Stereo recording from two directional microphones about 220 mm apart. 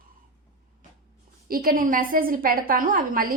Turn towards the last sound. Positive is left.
turn(degrees=-40)  # may be behind; listen again after turning